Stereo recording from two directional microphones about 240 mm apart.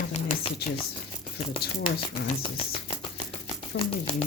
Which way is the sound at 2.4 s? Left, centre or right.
Left.